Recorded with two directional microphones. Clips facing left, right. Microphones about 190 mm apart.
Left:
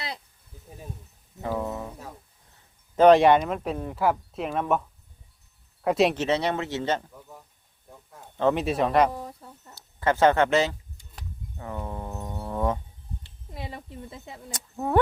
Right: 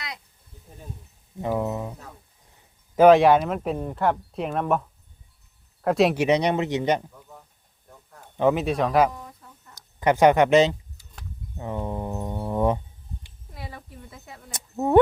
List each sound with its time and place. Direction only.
1.4 s a man's voice: 15° right (ahead or behind)
2.9 s speech: 5° right (ahead or behind)
6.1 s a man's voice: 15° right (ahead or behind)
7.1 s speech: 10° left (ahead or behind)
8.5 s speech: centre (ahead or behind)
9.1 s a sound: 30° left (ahead or behind)
10.0 s a man's voice: 15° right (ahead or behind)
11.5 s music: 25° right (ahead or behind)
13.5 s a sound: 25° left (ahead or behind)
14.5 s a sound: 25° right (ahead or behind)